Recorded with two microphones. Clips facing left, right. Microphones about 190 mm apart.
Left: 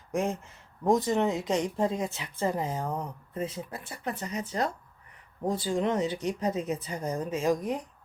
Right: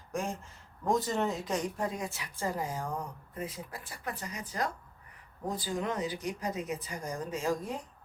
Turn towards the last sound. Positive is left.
turn(degrees=15)  # may be behind; listen again after turning